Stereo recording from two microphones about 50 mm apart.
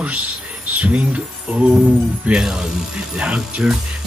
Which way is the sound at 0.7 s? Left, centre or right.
Right.